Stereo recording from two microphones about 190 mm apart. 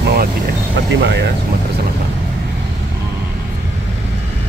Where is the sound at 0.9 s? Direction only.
70° right (ahead or behind).